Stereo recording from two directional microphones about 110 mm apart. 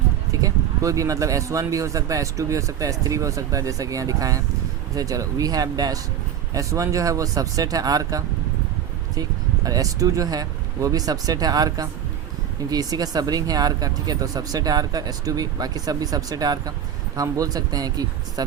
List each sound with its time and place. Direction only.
0.4 s speech: 30° right (ahead or behind)
9.6 s speech: 35° right (ahead or behind)